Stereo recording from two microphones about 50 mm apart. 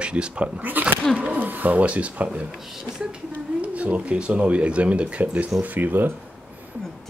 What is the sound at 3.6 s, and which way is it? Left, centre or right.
Speech, right.